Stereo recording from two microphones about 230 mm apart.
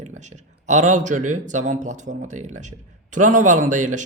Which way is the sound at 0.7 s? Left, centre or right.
Right.